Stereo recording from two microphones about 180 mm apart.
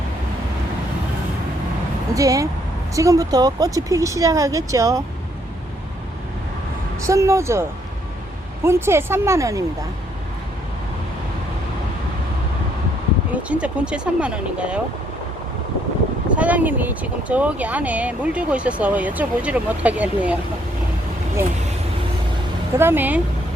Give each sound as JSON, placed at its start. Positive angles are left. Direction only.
{"t": 2.1, "sound": "speech", "side_deg": -20}
{"t": 7.0, "sound": "speech", "side_deg": -15}
{"t": 8.6, "sound": "speech", "side_deg": -15}
{"t": 13.3, "sound": "speech", "side_deg": -5}
{"t": 16.3, "sound": "speech", "side_deg": -10}
{"t": 22.8, "sound": "speech", "side_deg": -10}